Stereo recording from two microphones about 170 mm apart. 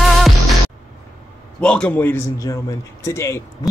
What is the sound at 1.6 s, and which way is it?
A man's voice, 5° left (ahead or behind).